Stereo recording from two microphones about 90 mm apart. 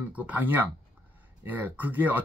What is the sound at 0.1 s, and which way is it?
Speech, 15° right (ahead or behind).